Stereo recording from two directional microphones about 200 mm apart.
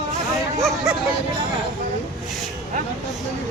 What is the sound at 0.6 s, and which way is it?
Speech, centre (ahead or behind).